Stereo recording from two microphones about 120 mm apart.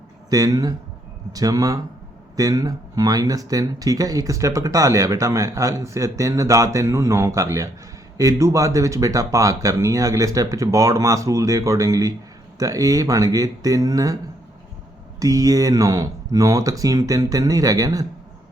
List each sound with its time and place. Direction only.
0.3 s speech: 30° right (ahead or behind)
15.2 s speech: 30° right (ahead or behind)